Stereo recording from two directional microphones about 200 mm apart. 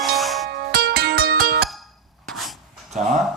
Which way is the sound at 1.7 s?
Centre (ahead or behind).